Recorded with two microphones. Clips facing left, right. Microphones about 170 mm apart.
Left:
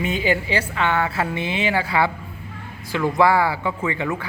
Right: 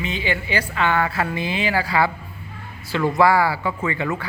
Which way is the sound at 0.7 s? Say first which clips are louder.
Right 2 dB; 20° left (ahead or behind).